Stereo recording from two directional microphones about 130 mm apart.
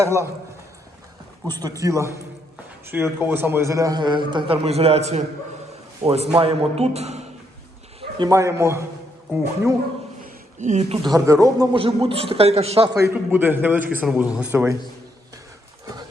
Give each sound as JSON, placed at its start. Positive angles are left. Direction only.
{"t": 0.0, "sound": "speech", "side_deg": -20}
{"t": 1.5, "sound": "a man's voice", "side_deg": -30}
{"t": 8.2, "sound": "speech", "side_deg": -25}
{"t": 10.6, "sound": "speech", "side_deg": -60}
{"t": 11.0, "sound": "speech", "side_deg": -25}
{"t": 11.7, "sound": "a man's voice", "side_deg": -45}
{"t": 12.9, "sound": "a man's voice", "side_deg": -20}